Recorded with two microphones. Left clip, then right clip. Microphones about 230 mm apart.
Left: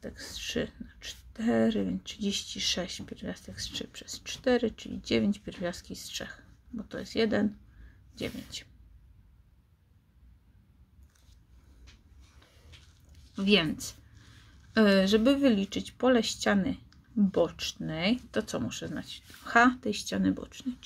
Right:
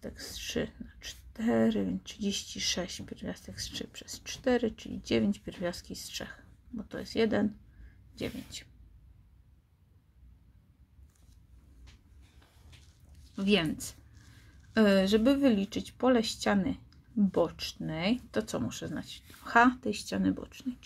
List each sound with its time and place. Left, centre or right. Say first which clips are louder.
0.0 s speech: left 2 dB; centre
13.3 s speech: left 3 dB; centre